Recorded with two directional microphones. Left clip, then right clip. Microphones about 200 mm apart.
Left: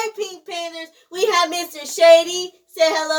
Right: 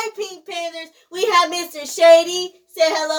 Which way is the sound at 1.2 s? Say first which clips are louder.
Right 1 dB; 5° right (ahead or behind).